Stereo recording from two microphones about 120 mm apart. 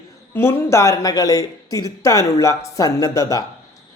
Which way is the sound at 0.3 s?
25° left (ahead or behind).